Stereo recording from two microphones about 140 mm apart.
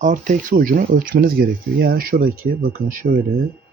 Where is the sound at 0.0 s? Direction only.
65° right (ahead or behind); by 3.2 s 90° right.